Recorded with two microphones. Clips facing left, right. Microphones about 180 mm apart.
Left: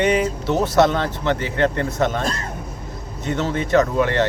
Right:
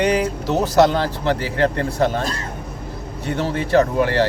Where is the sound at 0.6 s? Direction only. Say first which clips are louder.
Right 2 dB; 35° right (ahead or behind).